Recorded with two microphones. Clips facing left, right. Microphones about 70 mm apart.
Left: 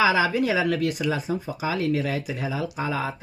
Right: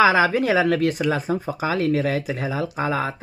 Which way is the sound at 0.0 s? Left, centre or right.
Right.